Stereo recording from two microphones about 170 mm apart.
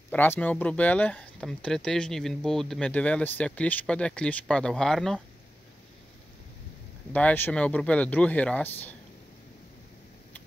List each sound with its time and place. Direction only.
0.1 s speech: 10° left (ahead or behind)
7.1 s speech: 10° left (ahead or behind)